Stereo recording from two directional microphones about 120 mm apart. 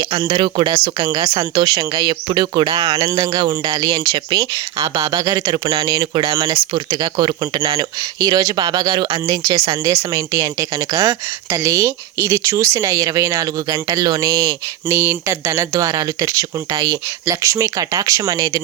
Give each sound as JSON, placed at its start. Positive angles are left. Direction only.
{"t": 0.3, "sound": "speech", "side_deg": -40}
{"t": 1.0, "sound": "speech", "side_deg": -30}